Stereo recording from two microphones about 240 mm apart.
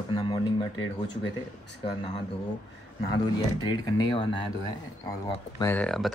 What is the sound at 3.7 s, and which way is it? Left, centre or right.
Speech, centre.